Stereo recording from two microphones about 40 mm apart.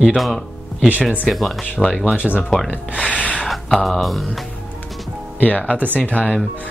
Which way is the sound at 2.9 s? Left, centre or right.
Left.